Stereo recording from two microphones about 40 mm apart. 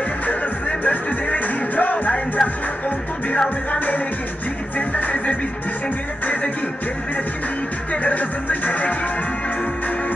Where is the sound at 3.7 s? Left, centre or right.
Left.